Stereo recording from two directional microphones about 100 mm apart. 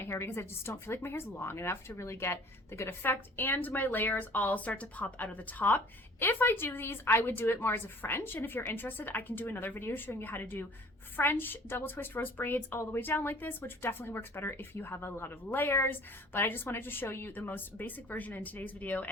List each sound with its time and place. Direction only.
0.0 s speech: 25° left (ahead or behind)